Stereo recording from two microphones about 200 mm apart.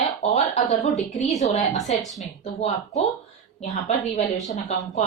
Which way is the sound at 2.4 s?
30° left (ahead or behind).